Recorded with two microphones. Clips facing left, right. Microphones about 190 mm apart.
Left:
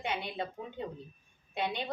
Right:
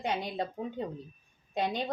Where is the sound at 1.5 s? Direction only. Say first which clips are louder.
Right 3 dB; 40° right (ahead or behind).